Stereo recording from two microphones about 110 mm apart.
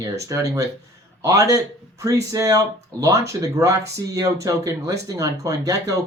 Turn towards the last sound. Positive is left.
turn(degrees=-30)  # may be behind; listen again after turning